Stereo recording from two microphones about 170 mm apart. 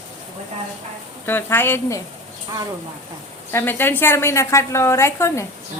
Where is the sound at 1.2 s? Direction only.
15° left (ahead or behind).